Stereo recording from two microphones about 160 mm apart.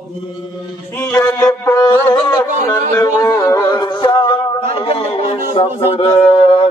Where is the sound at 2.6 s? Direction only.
20° left (ahead or behind).